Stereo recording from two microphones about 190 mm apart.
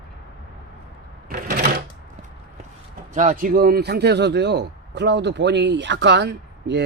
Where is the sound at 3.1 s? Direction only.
40° right (ahead or behind).